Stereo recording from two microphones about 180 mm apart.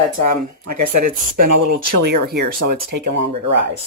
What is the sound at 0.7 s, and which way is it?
Speech, 50° right (ahead or behind).